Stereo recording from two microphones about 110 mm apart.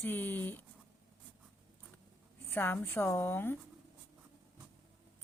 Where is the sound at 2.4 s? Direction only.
20° left (ahead or behind).